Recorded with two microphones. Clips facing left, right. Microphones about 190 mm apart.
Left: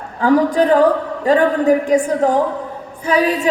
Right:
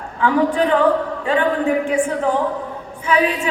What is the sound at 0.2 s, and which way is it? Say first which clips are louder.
A man's voice: left 3 dB; 40° left (ahead or behind).